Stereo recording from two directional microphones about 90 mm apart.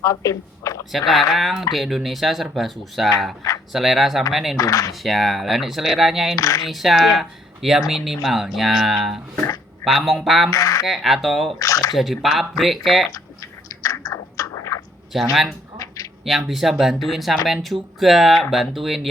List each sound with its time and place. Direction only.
0.0 s a woman's voice: 35° left (ahead or behind)
0.9 s speech: centre (ahead or behind)
4.5 s speech: 40° left (ahead or behind)
5.0 s speech: centre (ahead or behind)
6.3 s speech: 40° left (ahead or behind)
6.7 s speech: centre (ahead or behind)
10.5 s speech: 40° left (ahead or behind)
10.8 s speech: centre (ahead or behind)
11.6 s speech: 40° left (ahead or behind)
11.9 s speech: centre (ahead or behind)
13.7 s chewing: 40° left (ahead or behind)
15.1 s speech: 5° right (ahead or behind)